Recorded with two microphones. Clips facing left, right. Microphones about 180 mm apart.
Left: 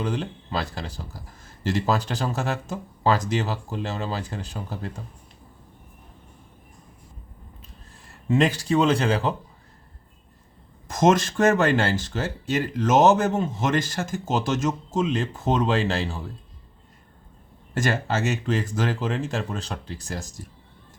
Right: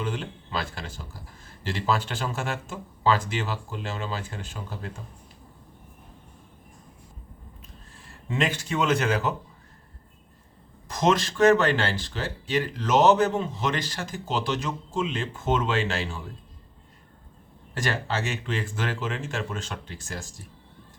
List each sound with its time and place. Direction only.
0.6 s speech: 35° left (ahead or behind)
8.3 s speech: 35° left (ahead or behind)
10.8 s speech: 45° left (ahead or behind)
17.7 s speech: 45° left (ahead or behind)